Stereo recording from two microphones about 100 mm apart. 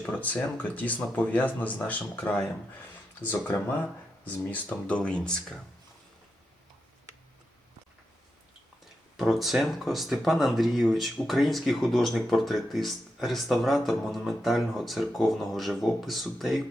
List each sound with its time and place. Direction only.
0.0 s speech: 15° left (ahead or behind)
9.1 s speech: centre (ahead or behind)